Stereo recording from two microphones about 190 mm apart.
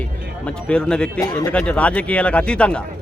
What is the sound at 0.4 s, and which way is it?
Speech, 5° left (ahead or behind).